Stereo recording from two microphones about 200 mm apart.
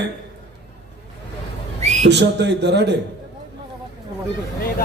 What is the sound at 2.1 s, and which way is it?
Speech, 60° right (ahead or behind).